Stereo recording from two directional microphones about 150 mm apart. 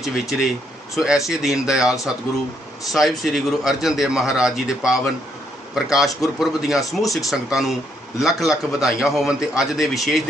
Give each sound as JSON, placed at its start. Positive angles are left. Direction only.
{"t": 0.0, "sound": "a man's voice", "side_deg": 0}